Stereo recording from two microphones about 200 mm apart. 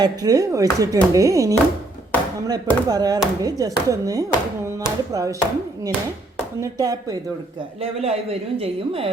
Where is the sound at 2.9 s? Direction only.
20° right (ahead or behind).